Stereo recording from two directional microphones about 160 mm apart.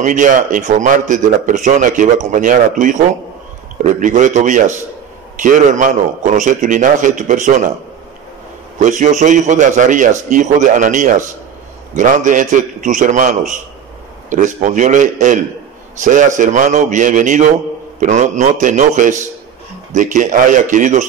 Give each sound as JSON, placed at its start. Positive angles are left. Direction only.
{"t": 0.0, "sound": "a man's voice", "side_deg": -50}
{"t": 8.7, "sound": "a man's voice", "side_deg": -50}